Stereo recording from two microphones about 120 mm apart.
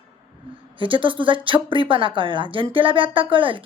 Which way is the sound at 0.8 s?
45° right (ahead or behind).